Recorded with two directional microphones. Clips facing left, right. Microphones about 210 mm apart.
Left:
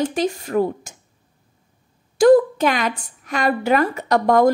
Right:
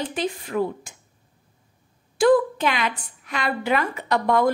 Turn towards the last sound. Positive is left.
turn(degrees=45)  # may be behind; listen again after turning